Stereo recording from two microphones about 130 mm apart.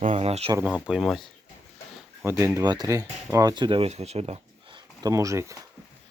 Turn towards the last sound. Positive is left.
turn(degrees=-25)  # may be behind; listen again after turning